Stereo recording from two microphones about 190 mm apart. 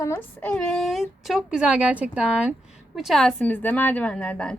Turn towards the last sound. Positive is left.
turn(degrees=5)  # may be behind; listen again after turning